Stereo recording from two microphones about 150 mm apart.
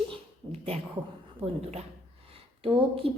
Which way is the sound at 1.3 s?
40° right (ahead or behind).